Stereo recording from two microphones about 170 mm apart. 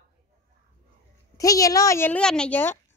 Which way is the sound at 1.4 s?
20° left (ahead or behind).